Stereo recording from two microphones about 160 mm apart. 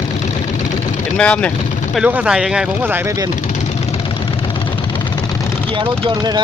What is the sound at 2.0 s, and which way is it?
Speech, 10° right (ahead or behind).